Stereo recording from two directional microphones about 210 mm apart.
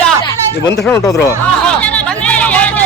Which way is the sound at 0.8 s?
5° left (ahead or behind).